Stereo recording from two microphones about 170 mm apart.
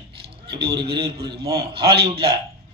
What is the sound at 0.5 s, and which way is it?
Speech, 75° right (ahead or behind).